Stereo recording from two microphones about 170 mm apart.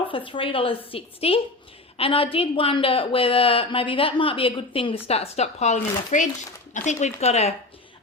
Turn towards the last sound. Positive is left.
turn(degrees=40)  # may be behind; listen again after turning